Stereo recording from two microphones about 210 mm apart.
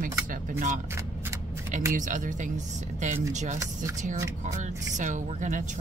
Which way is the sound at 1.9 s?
40° right (ahead or behind).